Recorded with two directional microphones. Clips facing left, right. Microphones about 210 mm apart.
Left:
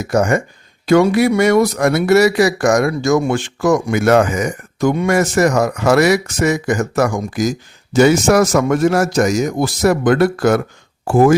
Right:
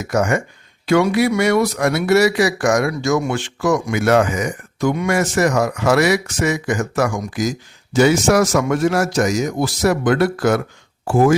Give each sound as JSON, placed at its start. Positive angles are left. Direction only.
{"t": 0.0, "sound": "speech", "side_deg": 35}